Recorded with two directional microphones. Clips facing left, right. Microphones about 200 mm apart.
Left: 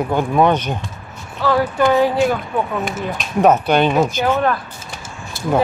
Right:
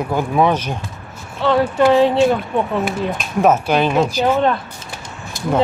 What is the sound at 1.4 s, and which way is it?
Speech, 25° right (ahead or behind).